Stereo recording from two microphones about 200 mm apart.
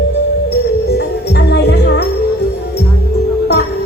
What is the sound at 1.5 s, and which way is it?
Music, 55° left (ahead or behind).